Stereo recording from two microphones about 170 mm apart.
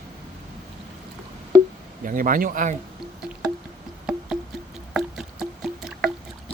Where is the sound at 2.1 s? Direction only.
55° right (ahead or behind).